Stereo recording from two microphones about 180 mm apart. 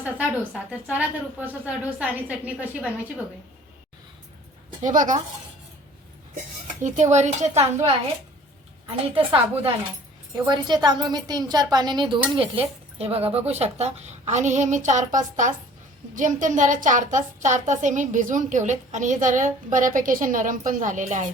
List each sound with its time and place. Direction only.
0.0 s a woman's voice: 5° right (ahead or behind)
4.8 s a woman's voice: 45° right (ahead or behind)
6.8 s a woman's voice: 40° right (ahead or behind)
9.1 s a woman's voice: 30° right (ahead or behind)